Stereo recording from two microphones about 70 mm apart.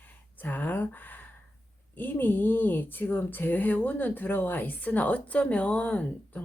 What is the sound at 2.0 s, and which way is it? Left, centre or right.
Speech, left.